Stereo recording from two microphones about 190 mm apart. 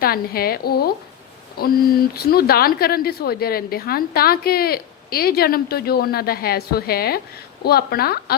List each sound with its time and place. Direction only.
0.0 s a woman's voice: 55° left (ahead or behind)